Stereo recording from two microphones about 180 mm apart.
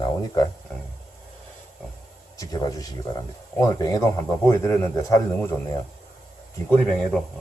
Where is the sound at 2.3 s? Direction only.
20° left (ahead or behind).